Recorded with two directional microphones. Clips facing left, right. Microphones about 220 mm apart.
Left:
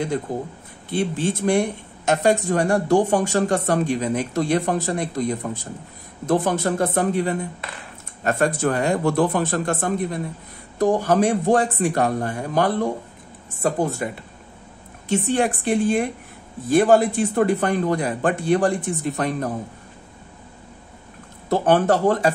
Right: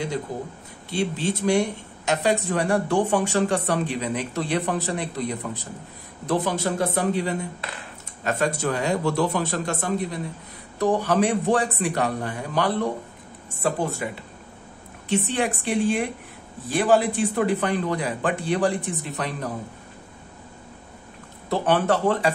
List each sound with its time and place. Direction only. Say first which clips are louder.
0.3 s speech: left 4 dB; 45° left (ahead or behind)
15.0 s speech: left 3 dB; 45° left (ahead or behind)
21.5 s speech: left 4 dB; 45° left (ahead or behind)